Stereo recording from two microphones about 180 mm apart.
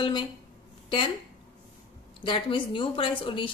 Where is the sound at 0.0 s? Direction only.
25° left (ahead or behind).